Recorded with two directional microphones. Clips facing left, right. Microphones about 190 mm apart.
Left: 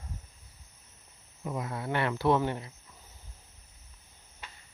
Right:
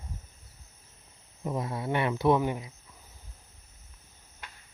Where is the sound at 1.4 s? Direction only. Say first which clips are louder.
Right 3 dB; 25° right (ahead or behind); by 2.7 s 10° right (ahead or behind).